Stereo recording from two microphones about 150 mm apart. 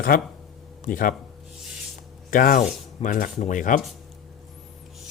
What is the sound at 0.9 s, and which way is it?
Speech, 65° left (ahead or behind).